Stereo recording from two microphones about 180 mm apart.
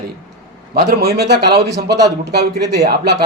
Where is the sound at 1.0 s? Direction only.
65° right (ahead or behind).